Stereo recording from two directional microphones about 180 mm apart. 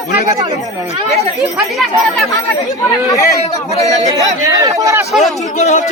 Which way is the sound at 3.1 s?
15° left (ahead or behind).